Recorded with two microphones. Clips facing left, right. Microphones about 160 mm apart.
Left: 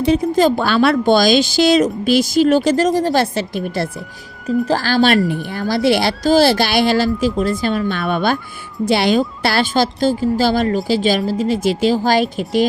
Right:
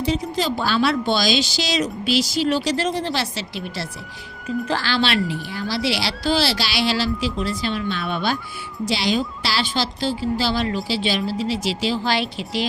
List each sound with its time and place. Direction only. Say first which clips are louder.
0.0 s a woman's voice: left 9 dB; 55° left (ahead or behind)